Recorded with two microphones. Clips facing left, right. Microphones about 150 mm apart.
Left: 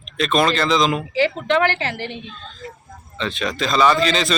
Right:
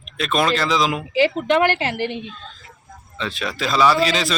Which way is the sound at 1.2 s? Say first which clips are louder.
Right 2 dB; 15° right (ahead or behind).